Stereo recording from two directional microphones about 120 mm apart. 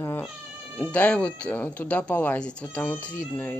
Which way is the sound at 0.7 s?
10° left (ahead or behind).